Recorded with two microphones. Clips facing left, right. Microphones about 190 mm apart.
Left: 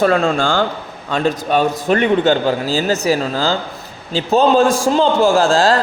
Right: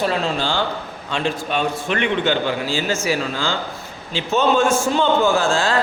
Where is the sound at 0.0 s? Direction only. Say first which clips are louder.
Left 6 dB; 50° left (ahead or behind).